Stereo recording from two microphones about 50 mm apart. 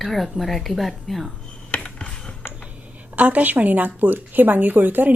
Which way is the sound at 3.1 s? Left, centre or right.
Right.